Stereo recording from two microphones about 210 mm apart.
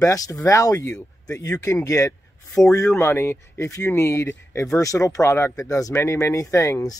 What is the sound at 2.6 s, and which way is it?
Speech, centre (ahead or behind).